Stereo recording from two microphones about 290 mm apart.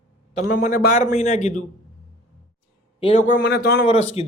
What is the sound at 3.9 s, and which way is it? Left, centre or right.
Speech, left.